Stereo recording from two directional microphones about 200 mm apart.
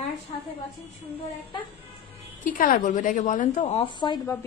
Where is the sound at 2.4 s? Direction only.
45° left (ahead or behind).